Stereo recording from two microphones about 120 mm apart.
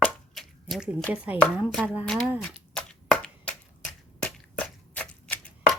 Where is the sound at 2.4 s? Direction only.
5° left (ahead or behind).